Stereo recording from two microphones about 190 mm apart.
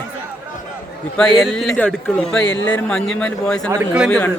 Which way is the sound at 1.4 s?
Centre (ahead or behind).